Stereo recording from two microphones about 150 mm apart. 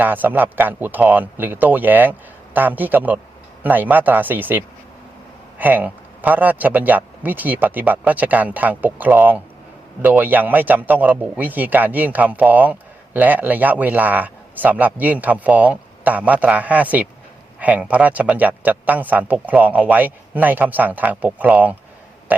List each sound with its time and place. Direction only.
0.0 s speech: 10° right (ahead or behind)
22.3 s burping: 10° right (ahead or behind)